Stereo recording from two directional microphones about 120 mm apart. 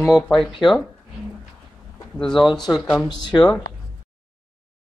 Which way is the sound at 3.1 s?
35° left (ahead or behind).